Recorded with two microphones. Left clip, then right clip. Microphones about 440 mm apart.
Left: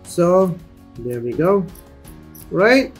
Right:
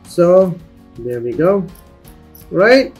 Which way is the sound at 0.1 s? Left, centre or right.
Centre.